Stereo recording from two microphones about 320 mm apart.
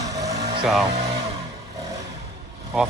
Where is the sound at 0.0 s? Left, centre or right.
Centre.